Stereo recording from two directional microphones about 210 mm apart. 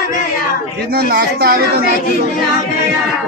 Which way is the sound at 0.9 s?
45° right (ahead or behind).